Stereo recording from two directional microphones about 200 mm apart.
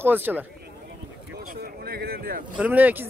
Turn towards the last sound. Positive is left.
turn(degrees=-10)  # may be behind; listen again after turning